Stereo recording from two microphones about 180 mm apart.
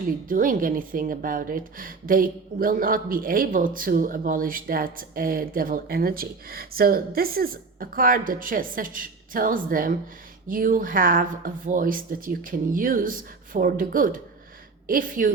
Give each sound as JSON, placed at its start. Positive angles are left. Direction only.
{"t": 0.3, "sound": "a woman's voice", "side_deg": -50}